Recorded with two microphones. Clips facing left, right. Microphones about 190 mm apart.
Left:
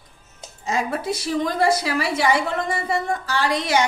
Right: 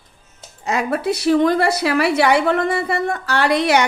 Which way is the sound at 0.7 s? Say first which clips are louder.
Right 4 dB; 65° right (ahead or behind).